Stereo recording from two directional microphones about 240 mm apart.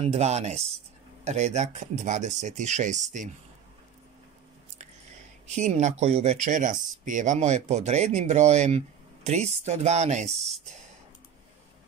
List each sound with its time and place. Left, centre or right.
0.0 s speech: right
5.5 s speech: right